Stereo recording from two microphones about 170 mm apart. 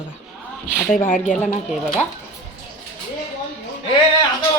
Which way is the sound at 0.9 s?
50° left (ahead or behind).